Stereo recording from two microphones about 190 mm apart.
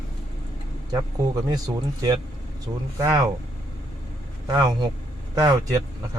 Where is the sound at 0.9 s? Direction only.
20° right (ahead or behind).